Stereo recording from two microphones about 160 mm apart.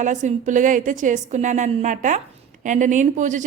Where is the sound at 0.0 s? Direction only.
50° right (ahead or behind).